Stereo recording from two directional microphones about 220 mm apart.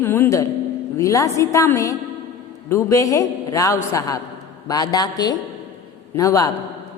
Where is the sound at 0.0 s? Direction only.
10° left (ahead or behind).